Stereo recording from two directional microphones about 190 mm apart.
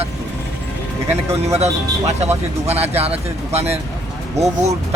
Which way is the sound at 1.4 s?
35° right (ahead or behind).